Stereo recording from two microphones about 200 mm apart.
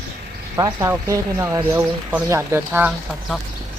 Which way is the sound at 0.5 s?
20° right (ahead or behind).